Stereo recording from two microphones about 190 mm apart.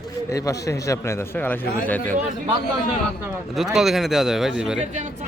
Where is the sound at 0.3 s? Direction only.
15° left (ahead or behind).